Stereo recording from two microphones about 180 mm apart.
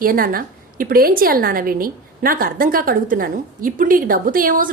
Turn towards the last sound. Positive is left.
turn(degrees=-50)  # may be behind; listen again after turning